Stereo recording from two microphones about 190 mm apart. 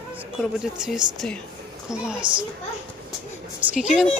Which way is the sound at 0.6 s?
5° right (ahead or behind).